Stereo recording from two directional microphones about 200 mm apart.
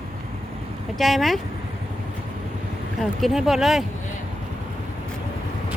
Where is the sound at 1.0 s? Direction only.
Centre (ahead or behind).